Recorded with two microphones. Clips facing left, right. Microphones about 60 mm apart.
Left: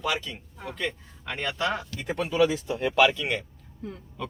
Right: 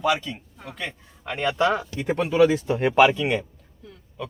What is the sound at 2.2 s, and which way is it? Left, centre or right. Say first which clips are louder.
Speech: right 5 dB; right.